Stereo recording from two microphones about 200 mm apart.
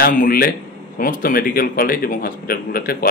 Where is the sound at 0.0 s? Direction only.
45° left (ahead or behind).